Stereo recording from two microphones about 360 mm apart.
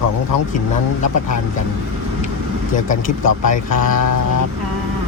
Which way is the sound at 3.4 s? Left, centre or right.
Left.